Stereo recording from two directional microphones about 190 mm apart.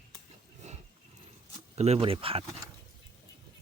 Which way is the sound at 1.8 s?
30° right (ahead or behind).